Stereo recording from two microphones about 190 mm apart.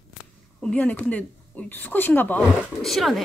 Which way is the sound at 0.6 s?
5° left (ahead or behind).